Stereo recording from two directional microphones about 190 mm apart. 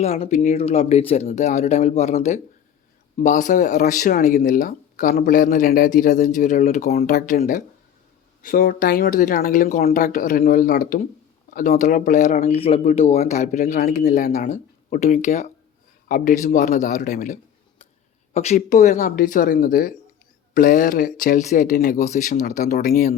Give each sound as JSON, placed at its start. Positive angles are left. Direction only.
{"t": 0.0, "sound": "speech", "side_deg": 35}
{"t": 6.9, "sound": "speech", "side_deg": 50}